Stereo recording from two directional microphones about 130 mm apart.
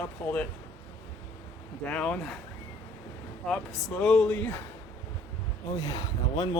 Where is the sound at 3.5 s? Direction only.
Centre (ahead or behind).